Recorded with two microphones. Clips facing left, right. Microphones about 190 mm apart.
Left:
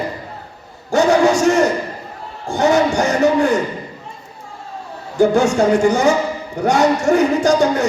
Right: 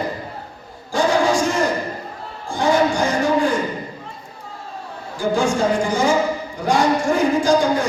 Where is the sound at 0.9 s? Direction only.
70° left (ahead or behind).